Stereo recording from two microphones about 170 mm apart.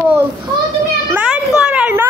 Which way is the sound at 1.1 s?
10° right (ahead or behind).